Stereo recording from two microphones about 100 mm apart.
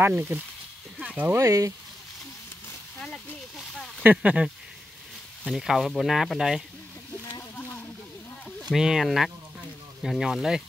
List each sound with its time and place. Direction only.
0.0 s speech: 20° right (ahead or behind)
1.0 s a sound: 15° right (ahead or behind)
1.3 s speech: 35° right (ahead or behind)
3.0 s speech: 10° left (ahead or behind)
4.0 s speech: 15° right (ahead or behind)
5.5 s speech: 5° right (ahead or behind)
7.5 s a sound: 25° left (ahead or behind)
8.5 s speech: centre (ahead or behind)